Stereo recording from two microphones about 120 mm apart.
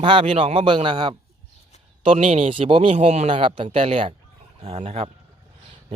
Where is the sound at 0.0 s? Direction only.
45° right (ahead or behind).